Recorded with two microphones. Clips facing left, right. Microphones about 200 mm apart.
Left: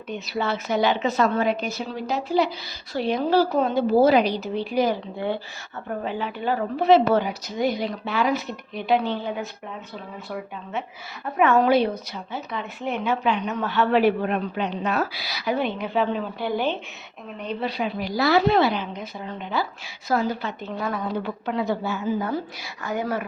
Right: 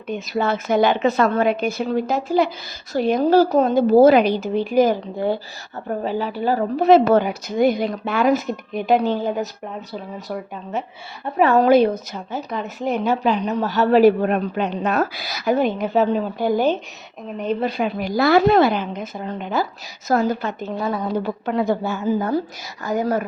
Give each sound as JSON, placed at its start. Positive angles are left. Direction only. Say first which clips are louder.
{"t": 0.1, "sound": "a woman's voice", "louder": "right 5 dB", "side_deg": -50}